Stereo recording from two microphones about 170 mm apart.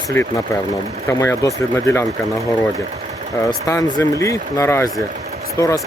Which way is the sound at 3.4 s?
20° left (ahead or behind).